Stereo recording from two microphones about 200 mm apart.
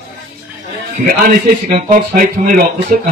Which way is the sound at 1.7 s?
45° right (ahead or behind).